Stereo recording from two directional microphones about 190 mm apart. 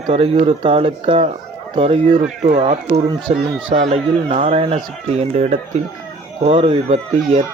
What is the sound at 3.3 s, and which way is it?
Speech, 35° right (ahead or behind).